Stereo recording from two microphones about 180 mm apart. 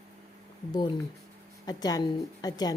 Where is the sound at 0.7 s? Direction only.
25° left (ahead or behind).